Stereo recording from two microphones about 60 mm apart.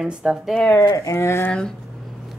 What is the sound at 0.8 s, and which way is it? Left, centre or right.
Speech, left.